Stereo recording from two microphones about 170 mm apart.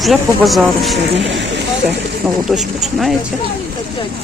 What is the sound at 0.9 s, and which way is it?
Speech, 90° right.